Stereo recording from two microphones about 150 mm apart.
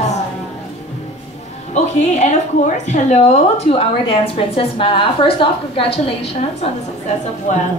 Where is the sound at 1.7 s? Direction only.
50° left (ahead or behind).